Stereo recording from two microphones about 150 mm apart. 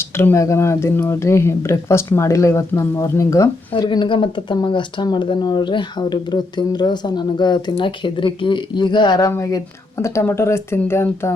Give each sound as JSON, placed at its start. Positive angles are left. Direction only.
{"t": 0.2, "sound": "speech", "side_deg": 20}
{"t": 3.7, "sound": "speech", "side_deg": 35}